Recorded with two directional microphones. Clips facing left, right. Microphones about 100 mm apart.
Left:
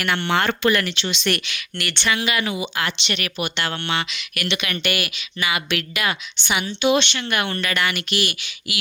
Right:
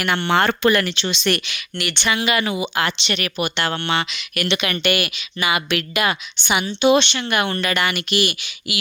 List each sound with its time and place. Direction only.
0.0 s speech: 30° right (ahead or behind)
2.0 s speech: 20° right (ahead or behind)
2.2 s speech: 35° right (ahead or behind); by 8.8 s 20° right (ahead or behind)